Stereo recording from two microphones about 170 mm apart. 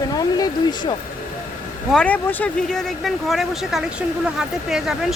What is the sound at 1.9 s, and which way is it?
Speech, 5° left (ahead or behind).